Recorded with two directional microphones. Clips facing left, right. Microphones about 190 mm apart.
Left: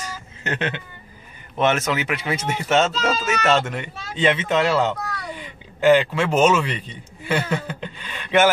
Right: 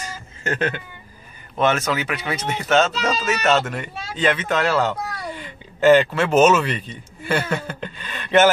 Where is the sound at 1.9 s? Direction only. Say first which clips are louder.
Even; 20° left (ahead or behind).